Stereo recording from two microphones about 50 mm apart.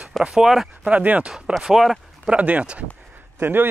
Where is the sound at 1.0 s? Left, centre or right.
Right.